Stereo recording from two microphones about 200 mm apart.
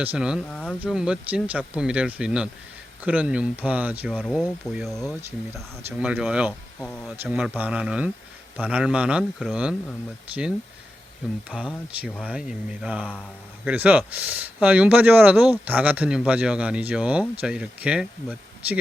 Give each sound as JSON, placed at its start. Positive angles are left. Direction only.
{"t": 0.0, "sound": "speech", "side_deg": -5}
{"t": 0.5, "sound": "speech", "side_deg": 5}
{"t": 11.4, "sound": "speech", "side_deg": -5}